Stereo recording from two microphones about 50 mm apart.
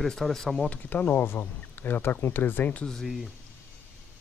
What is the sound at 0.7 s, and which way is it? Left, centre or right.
Speech, left.